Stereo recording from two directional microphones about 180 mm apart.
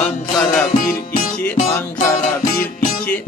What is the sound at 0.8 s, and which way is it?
Music, 55° left (ahead or behind).